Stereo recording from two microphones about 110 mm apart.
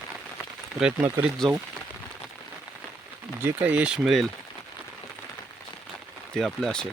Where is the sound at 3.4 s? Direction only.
15° right (ahead or behind).